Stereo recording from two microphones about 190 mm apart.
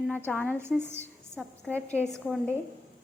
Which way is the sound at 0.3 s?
10° left (ahead or behind).